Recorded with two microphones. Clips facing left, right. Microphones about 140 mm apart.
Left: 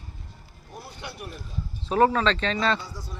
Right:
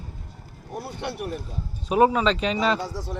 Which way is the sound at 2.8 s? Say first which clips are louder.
Right 8 dB; 90° right.